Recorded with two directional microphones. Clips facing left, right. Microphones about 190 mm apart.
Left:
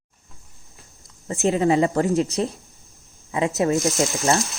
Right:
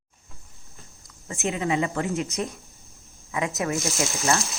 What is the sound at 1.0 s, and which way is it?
Speech, 35° left (ahead or behind).